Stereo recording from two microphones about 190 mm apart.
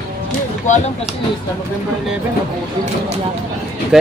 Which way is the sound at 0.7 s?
40° left (ahead or behind).